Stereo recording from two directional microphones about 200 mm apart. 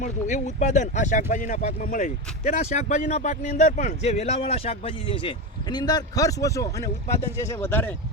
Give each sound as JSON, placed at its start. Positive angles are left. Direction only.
{"t": 0.0, "sound": "speech", "side_deg": 35}